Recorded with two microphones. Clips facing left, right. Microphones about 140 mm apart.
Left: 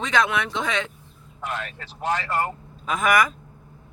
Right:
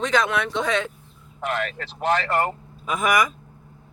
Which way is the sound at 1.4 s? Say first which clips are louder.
Right 5 dB; 75° right (ahead or behind).